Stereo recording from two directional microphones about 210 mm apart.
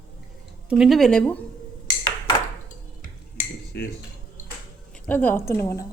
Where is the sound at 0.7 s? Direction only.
Centre (ahead or behind).